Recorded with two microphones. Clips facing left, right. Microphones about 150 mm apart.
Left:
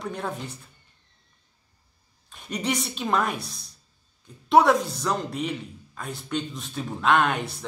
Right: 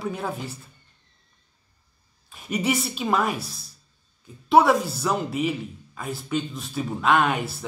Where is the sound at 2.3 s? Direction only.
5° right (ahead or behind).